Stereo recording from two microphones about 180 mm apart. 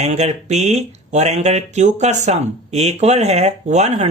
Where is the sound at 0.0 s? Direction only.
40° right (ahead or behind).